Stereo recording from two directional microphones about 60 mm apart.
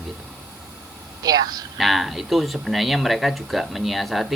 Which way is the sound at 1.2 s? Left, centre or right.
Right.